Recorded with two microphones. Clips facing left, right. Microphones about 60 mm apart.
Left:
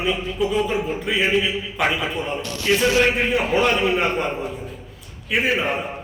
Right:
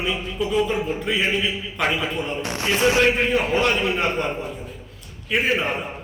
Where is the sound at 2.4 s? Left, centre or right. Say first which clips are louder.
Left 1 dB; right.